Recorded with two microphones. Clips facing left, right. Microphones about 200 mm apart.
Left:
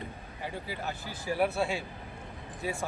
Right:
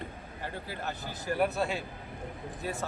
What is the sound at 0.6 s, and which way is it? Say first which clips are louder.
Speech: even; 10° left (ahead or behind).